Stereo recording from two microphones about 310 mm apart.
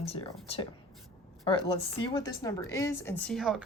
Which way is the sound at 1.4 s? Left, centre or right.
Centre.